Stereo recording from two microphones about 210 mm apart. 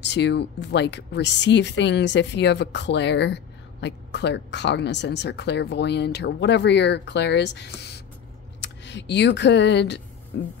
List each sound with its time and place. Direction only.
0.0 s speech: 55° left (ahead or behind)